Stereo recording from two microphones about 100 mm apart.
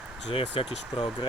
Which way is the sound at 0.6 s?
65° left (ahead or behind).